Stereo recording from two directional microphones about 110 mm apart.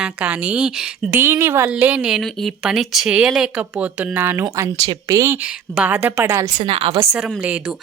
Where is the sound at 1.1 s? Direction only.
20° right (ahead or behind).